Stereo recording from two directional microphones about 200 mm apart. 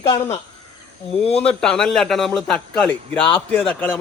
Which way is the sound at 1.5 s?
5° left (ahead or behind).